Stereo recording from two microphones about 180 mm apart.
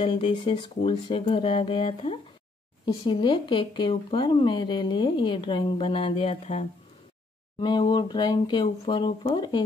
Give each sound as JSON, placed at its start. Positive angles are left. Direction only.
{"t": 0.0, "sound": "speech", "side_deg": 30}
{"t": 7.6, "sound": "speech", "side_deg": 25}